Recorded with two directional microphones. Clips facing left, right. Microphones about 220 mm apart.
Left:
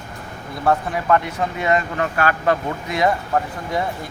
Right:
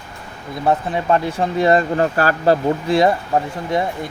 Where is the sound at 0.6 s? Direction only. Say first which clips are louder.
Right 1 dB; 25° right (ahead or behind).